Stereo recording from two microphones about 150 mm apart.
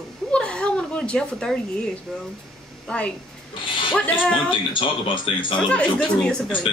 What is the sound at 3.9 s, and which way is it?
Speech, 5° left (ahead or behind).